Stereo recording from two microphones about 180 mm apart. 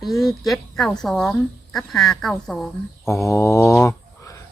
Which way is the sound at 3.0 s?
15° left (ahead or behind).